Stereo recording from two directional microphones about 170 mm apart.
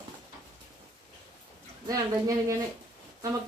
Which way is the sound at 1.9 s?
20° right (ahead or behind).